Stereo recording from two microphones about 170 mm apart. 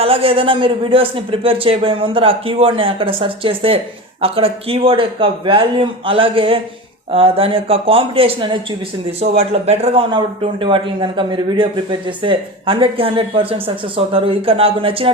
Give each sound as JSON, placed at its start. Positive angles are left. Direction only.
{"t": 0.0, "sound": "speech", "side_deg": -35}